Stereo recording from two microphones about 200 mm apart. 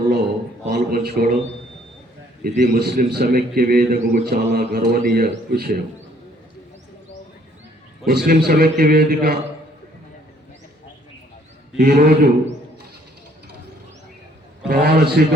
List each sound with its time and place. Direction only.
0.7 s a man's voice: 50° right (ahead or behind)
2.4 s a man's voice: 50° right (ahead or behind)
8.0 s a man's voice: 50° right (ahead or behind)
11.8 s a man's voice: 50° right (ahead or behind)
14.7 s a man's voice: 50° right (ahead or behind)